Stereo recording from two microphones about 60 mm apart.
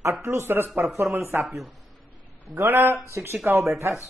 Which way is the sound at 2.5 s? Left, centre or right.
Right.